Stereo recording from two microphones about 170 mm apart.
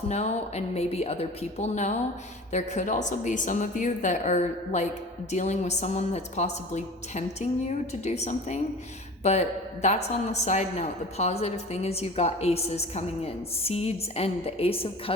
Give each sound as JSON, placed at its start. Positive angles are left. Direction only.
{"t": 0.1, "sound": "a woman's voice", "side_deg": 40}